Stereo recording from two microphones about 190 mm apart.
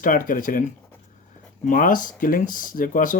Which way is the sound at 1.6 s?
45° left (ahead or behind).